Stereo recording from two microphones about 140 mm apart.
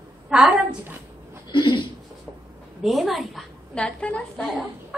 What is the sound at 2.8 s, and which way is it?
Female singing, centre (ahead or behind).